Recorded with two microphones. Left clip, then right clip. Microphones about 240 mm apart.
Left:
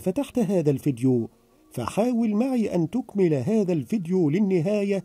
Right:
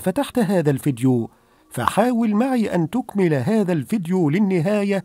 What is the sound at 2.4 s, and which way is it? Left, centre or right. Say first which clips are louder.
Speech: right 4 dB; right.